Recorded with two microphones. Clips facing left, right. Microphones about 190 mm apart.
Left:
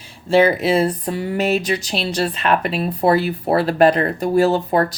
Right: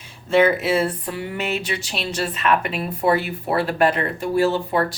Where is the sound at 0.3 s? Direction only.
30° left (ahead or behind).